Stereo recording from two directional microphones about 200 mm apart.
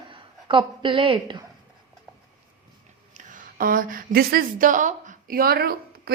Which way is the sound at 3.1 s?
40° right (ahead or behind).